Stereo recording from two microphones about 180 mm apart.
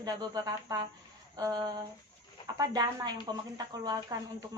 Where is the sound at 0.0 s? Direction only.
20° right (ahead or behind).